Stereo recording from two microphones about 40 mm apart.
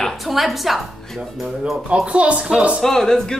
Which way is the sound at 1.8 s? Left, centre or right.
Right.